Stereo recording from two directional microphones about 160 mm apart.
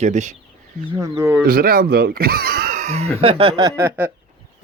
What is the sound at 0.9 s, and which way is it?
Speech, 15° right (ahead or behind).